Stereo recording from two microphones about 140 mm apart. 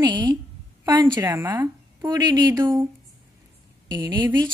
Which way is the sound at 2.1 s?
25° right (ahead or behind).